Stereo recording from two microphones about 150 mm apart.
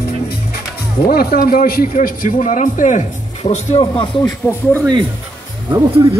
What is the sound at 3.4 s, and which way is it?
Speech, 40° left (ahead or behind).